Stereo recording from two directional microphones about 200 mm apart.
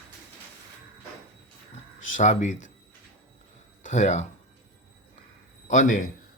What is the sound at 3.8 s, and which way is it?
Speech, 35° left (ahead or behind).